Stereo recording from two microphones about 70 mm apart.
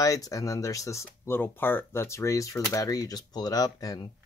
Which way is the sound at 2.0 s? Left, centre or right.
Left.